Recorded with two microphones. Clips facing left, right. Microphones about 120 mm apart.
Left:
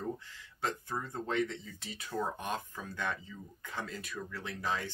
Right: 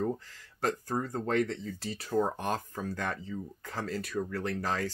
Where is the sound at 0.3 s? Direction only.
40° right (ahead or behind).